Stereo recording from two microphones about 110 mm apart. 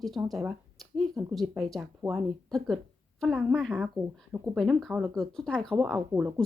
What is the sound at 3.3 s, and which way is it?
Speech, 15° right (ahead or behind).